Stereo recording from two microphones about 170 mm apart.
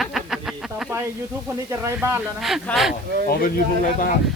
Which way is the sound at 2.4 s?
Centre (ahead or behind).